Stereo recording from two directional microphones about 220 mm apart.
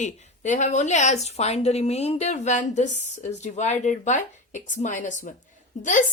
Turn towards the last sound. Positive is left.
turn(degrees=35)  # may be behind; listen again after turning